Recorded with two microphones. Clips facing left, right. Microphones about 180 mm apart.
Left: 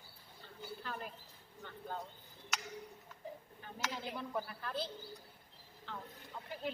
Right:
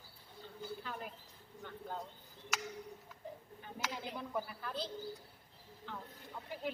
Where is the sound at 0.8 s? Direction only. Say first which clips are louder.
Even; 15° right (ahead or behind).